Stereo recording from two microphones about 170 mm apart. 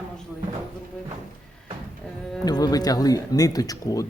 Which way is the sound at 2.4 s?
20° left (ahead or behind).